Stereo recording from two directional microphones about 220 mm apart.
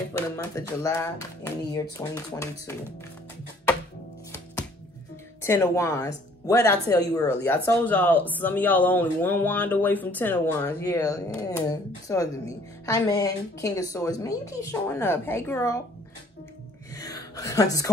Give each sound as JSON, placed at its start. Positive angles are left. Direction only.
{"t": 0.4, "sound": "speech", "side_deg": 15}
{"t": 5.4, "sound": "speech", "side_deg": 10}
{"t": 16.9, "sound": "a sound", "side_deg": 15}